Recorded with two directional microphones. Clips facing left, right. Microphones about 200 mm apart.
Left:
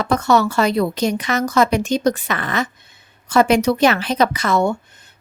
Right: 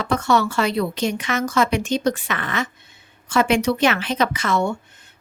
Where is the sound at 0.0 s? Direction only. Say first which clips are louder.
Left 3 dB; 40° left (ahead or behind).